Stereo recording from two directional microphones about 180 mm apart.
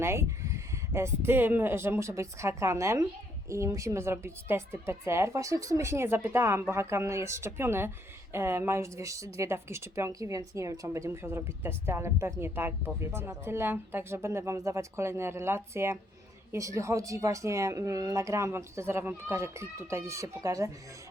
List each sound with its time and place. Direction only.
0.0 s speech: 15° right (ahead or behind)